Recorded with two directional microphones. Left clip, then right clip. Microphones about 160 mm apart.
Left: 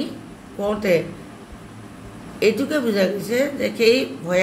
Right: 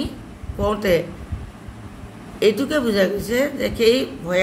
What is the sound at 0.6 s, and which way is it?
Speech, 15° right (ahead or behind).